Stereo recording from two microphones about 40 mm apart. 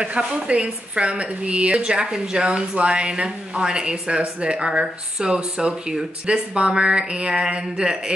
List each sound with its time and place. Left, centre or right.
0.5 s a woman's voice: right